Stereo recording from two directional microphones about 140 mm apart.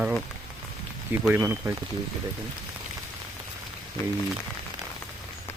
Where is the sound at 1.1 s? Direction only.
15° right (ahead or behind).